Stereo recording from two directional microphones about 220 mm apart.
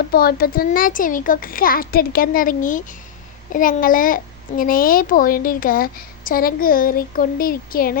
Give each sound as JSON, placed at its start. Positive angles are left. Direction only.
{"t": 0.1, "sound": "a child's voice", "side_deg": 45}